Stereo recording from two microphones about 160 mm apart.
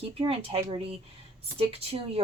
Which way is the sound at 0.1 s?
35° right (ahead or behind).